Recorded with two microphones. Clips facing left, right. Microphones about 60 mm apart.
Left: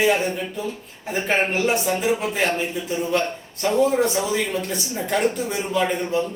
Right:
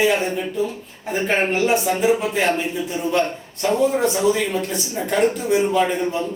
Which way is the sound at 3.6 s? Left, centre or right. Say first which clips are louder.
Right 2 dB; centre.